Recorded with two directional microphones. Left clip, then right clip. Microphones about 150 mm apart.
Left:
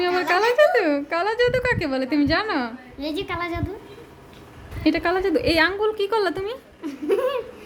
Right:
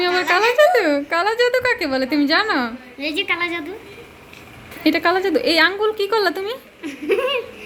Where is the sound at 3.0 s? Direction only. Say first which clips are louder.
Right 6 dB; 10° left (ahead or behind).